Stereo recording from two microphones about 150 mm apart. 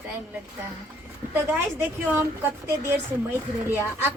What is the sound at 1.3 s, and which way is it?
A woman's voice, 15° right (ahead or behind).